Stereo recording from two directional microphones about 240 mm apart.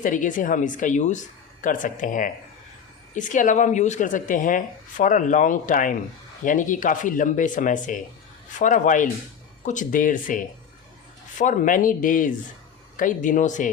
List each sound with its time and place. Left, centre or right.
0.0 s speech: left